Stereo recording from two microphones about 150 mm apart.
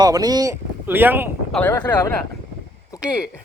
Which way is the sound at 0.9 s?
15° right (ahead or behind).